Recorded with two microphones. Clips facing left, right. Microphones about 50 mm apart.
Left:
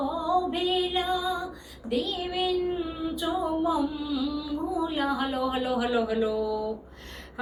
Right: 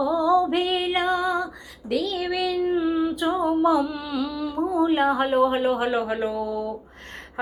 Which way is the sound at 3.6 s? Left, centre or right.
Right.